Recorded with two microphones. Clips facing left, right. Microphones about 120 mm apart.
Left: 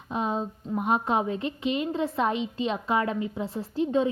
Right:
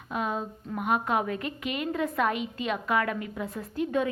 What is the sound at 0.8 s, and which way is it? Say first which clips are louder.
A woman's voice: left 2 dB; 30° left (ahead or behind).